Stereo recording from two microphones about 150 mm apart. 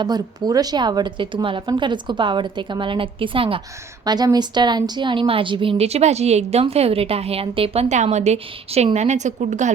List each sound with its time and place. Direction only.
0.0 s a woman's voice: 25° right (ahead or behind)
4.0 s a woman's voice: 25° right (ahead or behind); by 9.7 s 50° right (ahead or behind)